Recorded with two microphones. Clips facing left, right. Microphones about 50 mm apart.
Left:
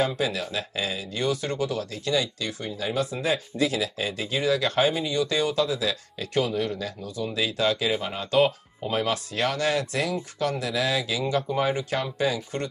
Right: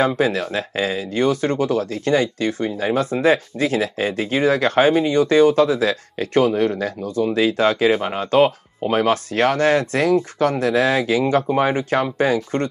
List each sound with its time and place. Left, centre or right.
0.0 s speech: right